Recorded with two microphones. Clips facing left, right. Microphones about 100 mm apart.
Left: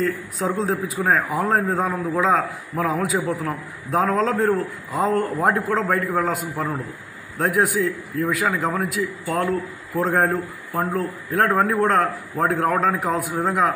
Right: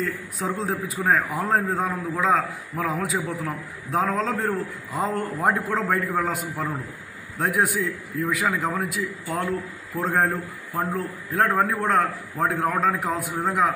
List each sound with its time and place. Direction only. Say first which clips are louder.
0.4 s a man's voice: left 4 dB; 5° right (ahead or behind)
1.0 s a man's voice: left 2 dB; 10° left (ahead or behind)